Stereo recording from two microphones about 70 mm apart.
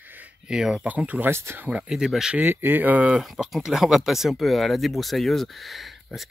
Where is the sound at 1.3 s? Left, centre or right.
Right.